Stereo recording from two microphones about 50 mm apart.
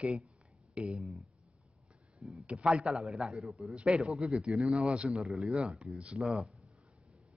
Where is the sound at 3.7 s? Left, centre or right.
Centre.